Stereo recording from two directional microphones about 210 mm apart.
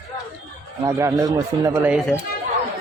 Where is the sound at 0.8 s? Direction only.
15° right (ahead or behind).